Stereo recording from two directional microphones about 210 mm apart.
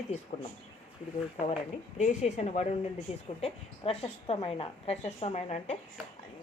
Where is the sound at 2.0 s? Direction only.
35° left (ahead or behind).